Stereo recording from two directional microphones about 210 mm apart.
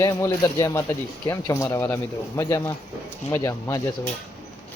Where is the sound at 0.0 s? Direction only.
15° left (ahead or behind).